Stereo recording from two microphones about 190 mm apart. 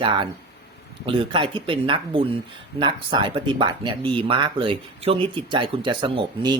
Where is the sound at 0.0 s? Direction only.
25° right (ahead or behind).